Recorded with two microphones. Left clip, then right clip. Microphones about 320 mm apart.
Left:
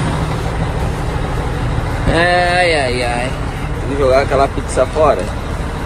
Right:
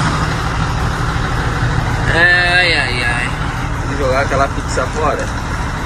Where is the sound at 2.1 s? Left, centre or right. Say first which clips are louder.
Right 2 dB; centre.